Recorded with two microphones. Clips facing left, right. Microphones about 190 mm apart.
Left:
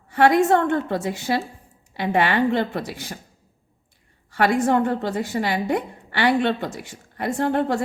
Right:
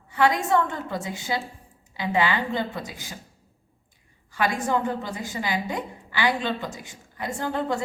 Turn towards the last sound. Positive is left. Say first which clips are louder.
# left 6 dB
turn(degrees=65)  # may be behind; listen again after turning